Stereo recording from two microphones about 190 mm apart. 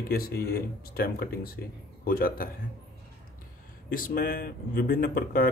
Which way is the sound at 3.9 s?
50° left (ahead or behind).